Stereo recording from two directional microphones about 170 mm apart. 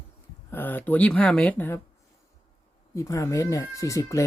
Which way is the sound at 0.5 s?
10° left (ahead or behind).